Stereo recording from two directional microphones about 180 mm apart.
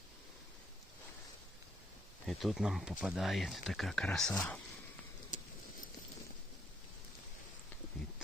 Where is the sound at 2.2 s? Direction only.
Centre (ahead or behind).